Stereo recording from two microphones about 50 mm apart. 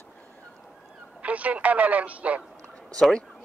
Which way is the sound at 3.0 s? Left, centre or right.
Centre.